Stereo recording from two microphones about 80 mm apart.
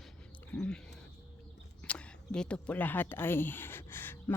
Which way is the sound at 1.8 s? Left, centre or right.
Centre.